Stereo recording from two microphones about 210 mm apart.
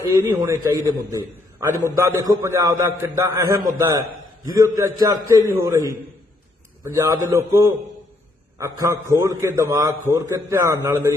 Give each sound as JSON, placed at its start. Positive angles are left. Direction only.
{"t": 0.0, "sound": "a man's voice", "side_deg": -15}